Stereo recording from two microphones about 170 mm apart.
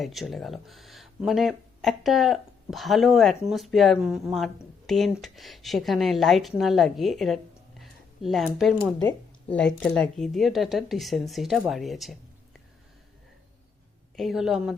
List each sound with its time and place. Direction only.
0.0 s speech: centre (ahead or behind)
7.8 s a sound: centre (ahead or behind)
8.8 s speech: 20° left (ahead or behind)
9.5 s speech: 5° left (ahead or behind)
14.2 s speech: centre (ahead or behind)